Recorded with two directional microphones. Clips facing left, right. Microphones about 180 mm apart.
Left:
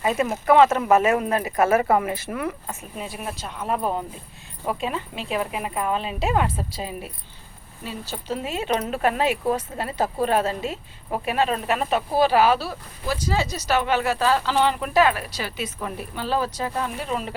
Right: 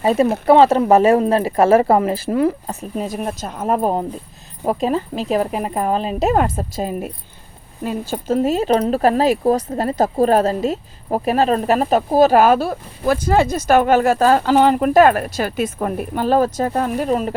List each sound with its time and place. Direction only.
0.0 s speech: 35° right (ahead or behind)